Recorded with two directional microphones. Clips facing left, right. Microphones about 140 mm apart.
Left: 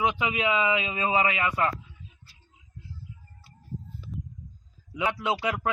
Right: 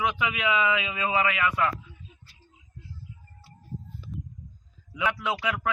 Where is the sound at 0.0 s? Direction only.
25° left (ahead or behind).